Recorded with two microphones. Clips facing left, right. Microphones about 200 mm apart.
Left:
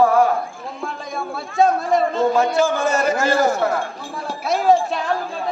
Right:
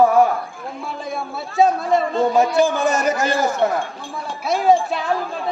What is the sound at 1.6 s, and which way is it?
Speech, centre (ahead or behind).